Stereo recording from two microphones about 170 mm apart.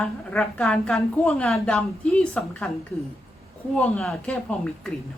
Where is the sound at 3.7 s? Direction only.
5° left (ahead or behind).